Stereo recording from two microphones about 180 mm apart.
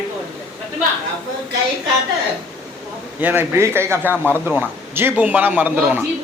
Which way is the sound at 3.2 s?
10° right (ahead or behind).